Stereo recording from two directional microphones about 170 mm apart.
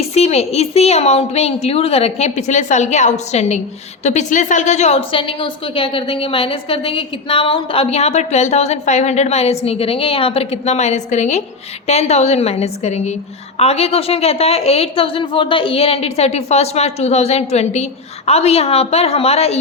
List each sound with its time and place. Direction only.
0.0 s a woman's voice: 40° left (ahead or behind)